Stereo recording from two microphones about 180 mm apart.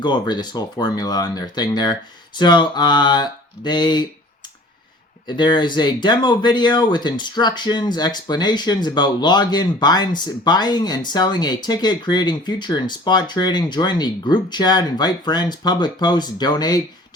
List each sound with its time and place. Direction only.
0.0 s speech: 25° left (ahead or behind)
5.2 s speech: 25° left (ahead or behind)